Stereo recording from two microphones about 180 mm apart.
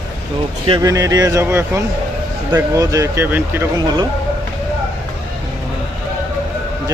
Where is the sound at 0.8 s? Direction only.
20° right (ahead or behind).